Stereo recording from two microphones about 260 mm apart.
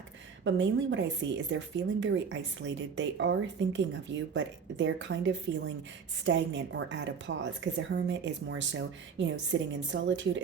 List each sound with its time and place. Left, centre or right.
0.4 s speech: right